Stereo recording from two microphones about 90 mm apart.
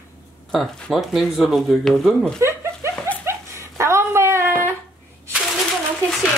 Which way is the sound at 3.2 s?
30° right (ahead or behind).